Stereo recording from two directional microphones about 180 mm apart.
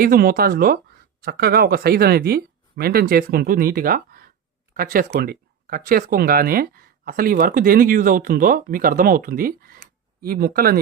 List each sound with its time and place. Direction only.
0.0 s speech: 55° right (ahead or behind)